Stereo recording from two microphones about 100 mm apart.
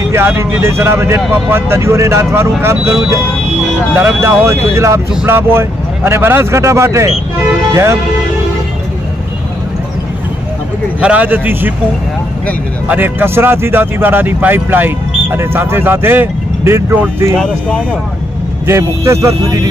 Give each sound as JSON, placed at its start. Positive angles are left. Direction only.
{"t": 0.1, "sound": "speech", "side_deg": -25}
{"t": 11.0, "sound": "speech", "side_deg": -15}
{"t": 12.8, "sound": "speech", "side_deg": -20}
{"t": 17.4, "sound": "speech", "side_deg": 15}
{"t": 18.7, "sound": "speech", "side_deg": -30}